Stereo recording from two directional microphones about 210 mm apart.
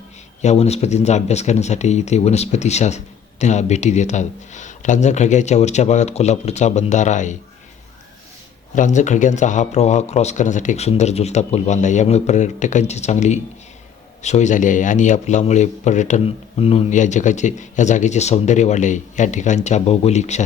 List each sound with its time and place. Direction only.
0.4 s speech: 30° left (ahead or behind)
8.7 s speech: 35° left (ahead or behind)